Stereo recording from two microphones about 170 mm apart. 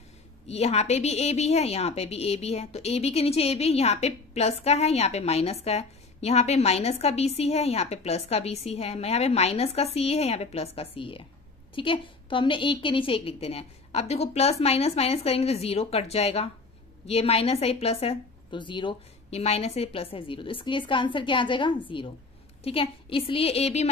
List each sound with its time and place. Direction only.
0.5 s a woman's voice: 40° left (ahead or behind)